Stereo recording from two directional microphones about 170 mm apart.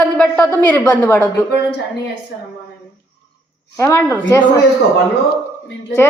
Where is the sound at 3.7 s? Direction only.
15° left (ahead or behind).